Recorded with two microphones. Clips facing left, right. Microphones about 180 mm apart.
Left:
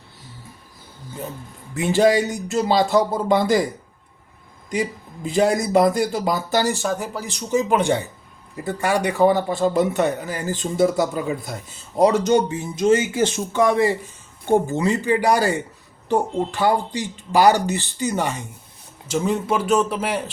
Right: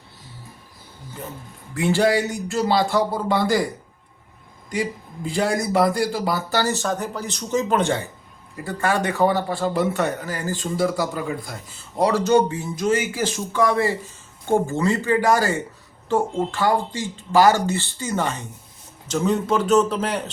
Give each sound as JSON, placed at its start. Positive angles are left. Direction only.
{"t": 1.7, "sound": "speech", "side_deg": 20}
{"t": 4.7, "sound": "speech", "side_deg": 20}